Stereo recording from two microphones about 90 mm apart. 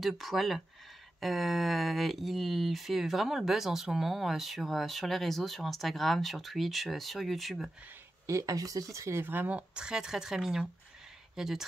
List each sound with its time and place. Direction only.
0.0 s speech: centre (ahead or behind)
8.3 s speech: 40° right (ahead or behind)
9.2 s speech: 20° right (ahead or behind); by 11.6 s 5° right (ahead or behind)